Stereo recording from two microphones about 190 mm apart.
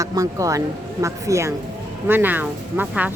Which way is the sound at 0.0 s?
20° right (ahead or behind).